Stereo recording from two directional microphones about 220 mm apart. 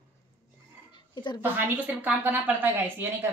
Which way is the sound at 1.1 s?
20° left (ahead or behind).